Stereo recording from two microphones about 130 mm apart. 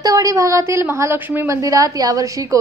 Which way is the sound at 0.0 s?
25° right (ahead or behind).